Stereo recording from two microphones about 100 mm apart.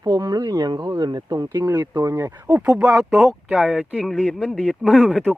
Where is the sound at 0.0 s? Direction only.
35° right (ahead or behind).